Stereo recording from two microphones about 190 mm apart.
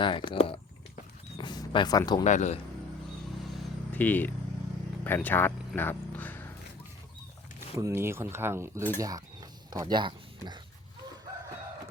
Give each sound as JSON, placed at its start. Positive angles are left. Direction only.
{"t": 0.0, "sound": "speech", "side_deg": 25}
{"t": 1.4, "sound": "a sound", "side_deg": 25}
{"t": 2.2, "sound": "speech", "side_deg": 40}
{"t": 3.5, "sound": "vehicle", "side_deg": 5}
{"t": 5.0, "sound": "a man's voice", "side_deg": 10}
{"t": 7.8, "sound": "speech", "side_deg": -15}
{"t": 9.0, "sound": "a sound", "side_deg": -20}